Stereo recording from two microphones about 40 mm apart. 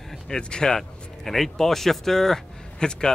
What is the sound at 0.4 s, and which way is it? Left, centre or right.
Speech, centre.